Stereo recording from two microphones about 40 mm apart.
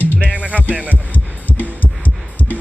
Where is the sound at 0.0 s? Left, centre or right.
Left.